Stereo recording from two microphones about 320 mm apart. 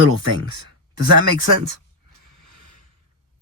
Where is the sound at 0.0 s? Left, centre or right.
Right.